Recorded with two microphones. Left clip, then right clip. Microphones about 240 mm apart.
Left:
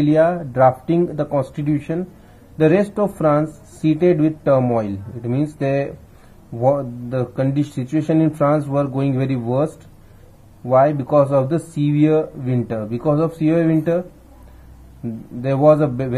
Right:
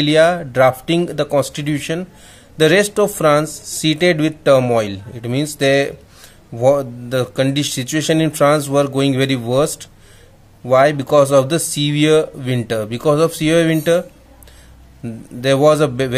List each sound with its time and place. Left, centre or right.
0.1 s speech: right
10.7 s speech: right
15.0 s speech: right